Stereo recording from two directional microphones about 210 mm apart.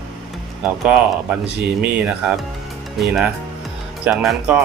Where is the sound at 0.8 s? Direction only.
5° right (ahead or behind).